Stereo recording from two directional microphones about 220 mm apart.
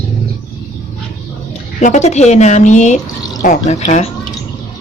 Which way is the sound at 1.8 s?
30° left (ahead or behind).